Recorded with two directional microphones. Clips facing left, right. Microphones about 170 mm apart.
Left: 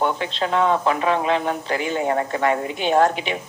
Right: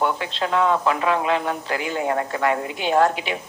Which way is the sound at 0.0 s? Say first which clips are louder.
Left 1 dB; 20° left (ahead or behind).